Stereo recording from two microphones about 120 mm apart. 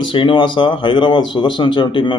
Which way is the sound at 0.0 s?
45° left (ahead or behind).